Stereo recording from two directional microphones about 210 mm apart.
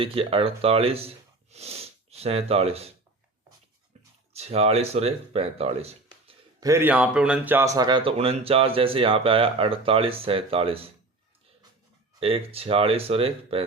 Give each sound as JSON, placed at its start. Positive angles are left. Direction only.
{"t": 0.0, "sound": "speech", "side_deg": -25}
{"t": 4.4, "sound": "speech", "side_deg": -30}
{"t": 6.6, "sound": "speech", "side_deg": -15}
{"t": 12.2, "sound": "speech", "side_deg": -25}